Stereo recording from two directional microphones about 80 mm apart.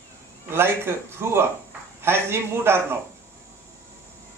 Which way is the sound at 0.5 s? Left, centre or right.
Right.